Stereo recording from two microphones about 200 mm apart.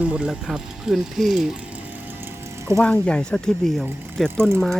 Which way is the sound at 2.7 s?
5° left (ahead or behind).